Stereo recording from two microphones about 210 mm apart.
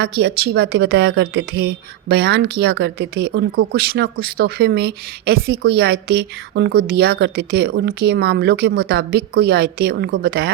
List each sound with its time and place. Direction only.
0.0 s a woman's voice: 50° right (ahead or behind)